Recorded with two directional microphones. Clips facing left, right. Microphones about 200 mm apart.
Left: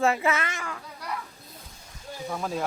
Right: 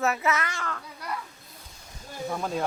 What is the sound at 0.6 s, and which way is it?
Speech, 10° left (ahead or behind).